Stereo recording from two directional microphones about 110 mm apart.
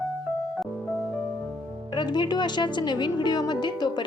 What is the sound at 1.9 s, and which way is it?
A woman's voice, 45° left (ahead or behind).